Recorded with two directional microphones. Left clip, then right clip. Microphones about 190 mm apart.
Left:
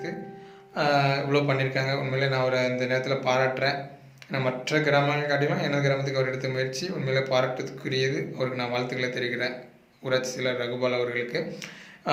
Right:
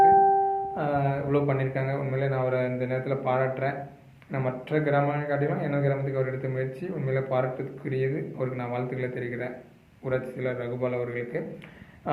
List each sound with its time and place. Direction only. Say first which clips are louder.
0.8 s a man's voice: left 4 dB; 20° left (ahead or behind)